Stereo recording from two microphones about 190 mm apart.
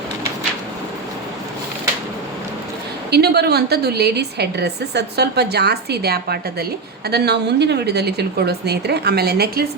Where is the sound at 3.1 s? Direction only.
60° right (ahead or behind).